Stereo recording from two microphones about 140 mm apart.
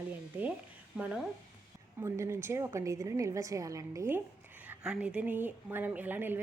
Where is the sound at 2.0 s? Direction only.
20° right (ahead or behind).